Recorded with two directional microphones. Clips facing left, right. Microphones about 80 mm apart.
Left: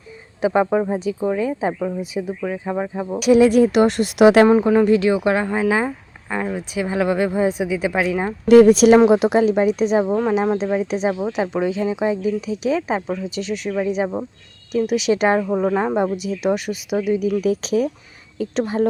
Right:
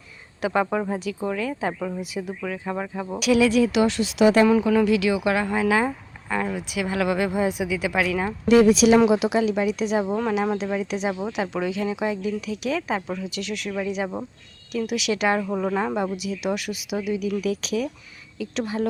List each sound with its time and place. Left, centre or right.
0.4 s speech: centre
3.2 s a woman's voice: left
4.4 s speech: left; by 6.6 s centre
6.6 s speech: left
8.4 s a woman's voice: left
15.4 s speech: centre; by 18.9 s left